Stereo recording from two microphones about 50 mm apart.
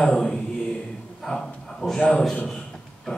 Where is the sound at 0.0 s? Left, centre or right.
Centre.